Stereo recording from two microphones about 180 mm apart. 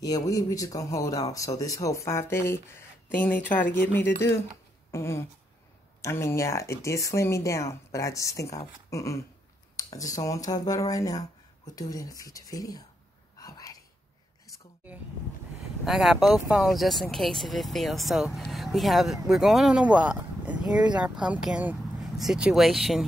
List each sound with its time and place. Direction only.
0.0 s speech: 20° left (ahead or behind)
13.4 s a sound: 20° left (ahead or behind)
15.8 s speech: centre (ahead or behind)